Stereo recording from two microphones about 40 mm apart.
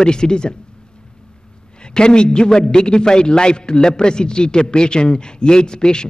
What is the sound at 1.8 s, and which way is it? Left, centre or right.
A man's voice, left.